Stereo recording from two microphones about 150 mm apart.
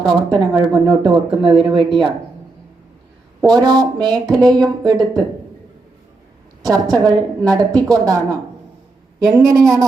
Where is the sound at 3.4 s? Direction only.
25° right (ahead or behind).